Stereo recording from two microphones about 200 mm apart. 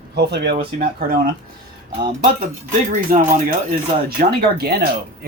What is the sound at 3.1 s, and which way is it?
Speech, 40° right (ahead or behind).